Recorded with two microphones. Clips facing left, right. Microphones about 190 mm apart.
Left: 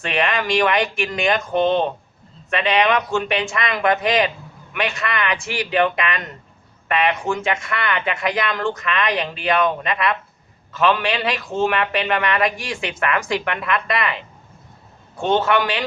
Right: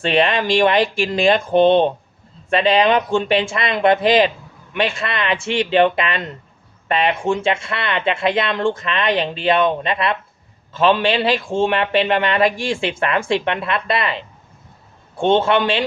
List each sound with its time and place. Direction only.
0.0 s a man's voice: 30° right (ahead or behind)